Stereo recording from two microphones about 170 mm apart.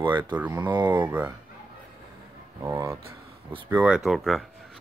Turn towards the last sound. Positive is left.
turn(degrees=0)  # may be behind; listen again after turning